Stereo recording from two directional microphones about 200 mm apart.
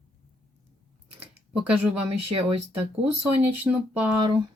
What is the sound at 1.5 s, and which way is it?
Speech, 5° right (ahead or behind).